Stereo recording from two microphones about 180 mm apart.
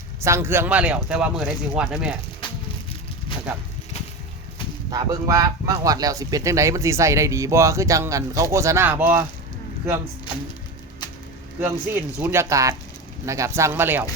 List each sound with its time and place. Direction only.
0.2 s speech: 15° right (ahead or behind)
4.9 s speech: 20° right (ahead or behind)
11.6 s speech: 10° right (ahead or behind)